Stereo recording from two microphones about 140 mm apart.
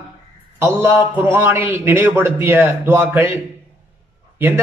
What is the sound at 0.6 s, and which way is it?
A man's voice, 20° right (ahead or behind).